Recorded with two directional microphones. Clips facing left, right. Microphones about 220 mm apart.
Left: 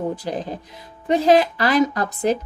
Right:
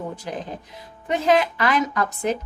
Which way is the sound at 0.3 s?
35° left (ahead or behind).